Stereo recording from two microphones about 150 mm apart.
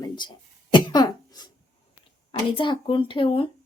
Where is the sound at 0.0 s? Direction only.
30° left (ahead or behind).